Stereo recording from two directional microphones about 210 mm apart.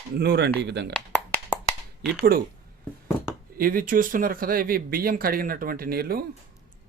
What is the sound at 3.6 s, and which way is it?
Speech, 40° right (ahead or behind).